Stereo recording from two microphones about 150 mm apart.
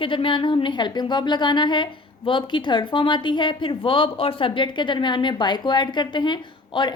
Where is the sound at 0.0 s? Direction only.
35° left (ahead or behind).